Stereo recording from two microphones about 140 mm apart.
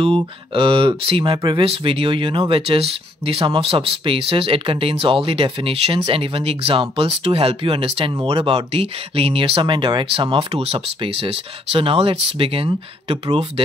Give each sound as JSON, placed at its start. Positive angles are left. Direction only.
{"t": 0.0, "sound": "speech", "side_deg": -40}